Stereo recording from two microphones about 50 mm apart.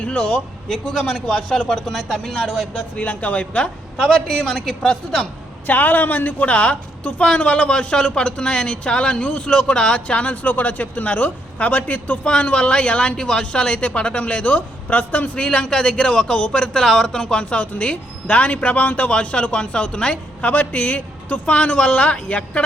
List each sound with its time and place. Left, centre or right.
0.0 s a man's voice: centre
1.9 s speech: centre
2.7 s a man's voice: left
5.6 s a man's voice: left